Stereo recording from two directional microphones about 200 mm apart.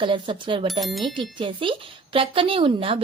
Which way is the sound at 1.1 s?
25° right (ahead or behind).